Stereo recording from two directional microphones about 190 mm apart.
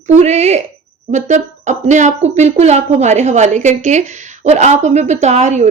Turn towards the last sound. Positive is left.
turn(degrees=-35)  # may be behind; listen again after turning